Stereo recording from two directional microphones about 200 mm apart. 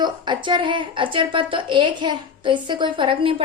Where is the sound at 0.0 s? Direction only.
25° right (ahead or behind).